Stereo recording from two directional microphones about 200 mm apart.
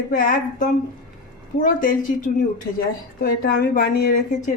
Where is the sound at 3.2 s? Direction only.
50° left (ahead or behind).